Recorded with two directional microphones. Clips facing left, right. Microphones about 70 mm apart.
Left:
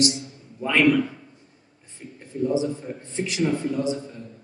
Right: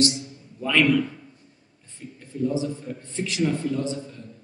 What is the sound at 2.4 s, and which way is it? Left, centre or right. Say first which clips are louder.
A man's voice: left 2 dB; centre.